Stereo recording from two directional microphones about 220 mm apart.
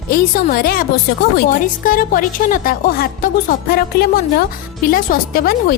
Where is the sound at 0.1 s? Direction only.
40° left (ahead or behind).